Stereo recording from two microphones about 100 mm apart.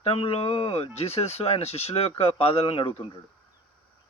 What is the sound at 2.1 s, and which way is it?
Speech, 80° left.